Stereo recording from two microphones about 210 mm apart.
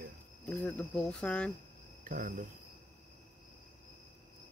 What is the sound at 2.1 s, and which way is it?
Cricket, 40° right (ahead or behind).